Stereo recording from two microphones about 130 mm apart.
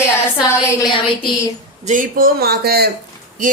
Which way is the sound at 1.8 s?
85° right.